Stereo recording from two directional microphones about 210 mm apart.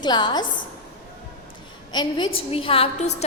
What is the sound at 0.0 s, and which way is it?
Speech, 20° left (ahead or behind).